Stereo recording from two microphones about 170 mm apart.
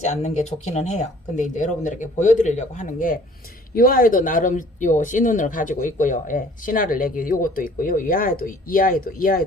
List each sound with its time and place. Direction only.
0.0 s speech: 40° left (ahead or behind); by 9.4 s 60° left (ahead or behind)